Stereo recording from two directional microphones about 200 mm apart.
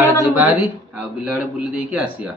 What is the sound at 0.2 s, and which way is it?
A man's voice, 10° right (ahead or behind).